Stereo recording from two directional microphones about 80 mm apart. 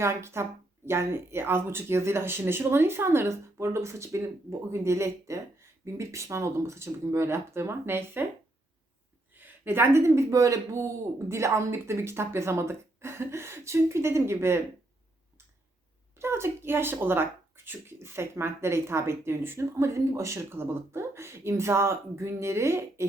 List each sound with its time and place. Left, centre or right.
0.0 s speech: right
9.3 s speech: right
16.1 s speech: right